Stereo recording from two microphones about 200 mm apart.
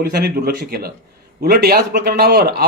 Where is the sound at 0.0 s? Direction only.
50° right (ahead or behind).